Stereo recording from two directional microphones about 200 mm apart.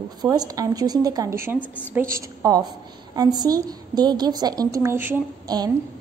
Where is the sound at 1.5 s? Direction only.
10° left (ahead or behind).